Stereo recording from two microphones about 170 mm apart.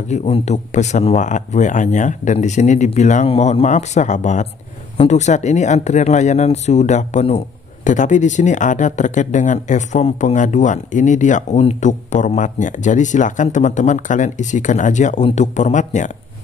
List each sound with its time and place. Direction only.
0.1 s speech: 40° left (ahead or behind)